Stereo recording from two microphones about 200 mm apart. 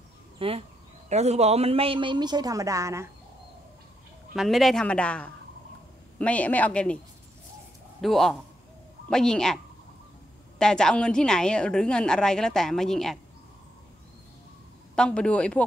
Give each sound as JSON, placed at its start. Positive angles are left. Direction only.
{"t": 0.4, "sound": "speech", "side_deg": -30}
{"t": 4.4, "sound": "a woman's voice", "side_deg": 0}
{"t": 8.0, "sound": "a woman's voice", "side_deg": 0}
{"t": 10.6, "sound": "a woman's voice", "side_deg": 5}
{"t": 15.0, "sound": "a woman's voice", "side_deg": 5}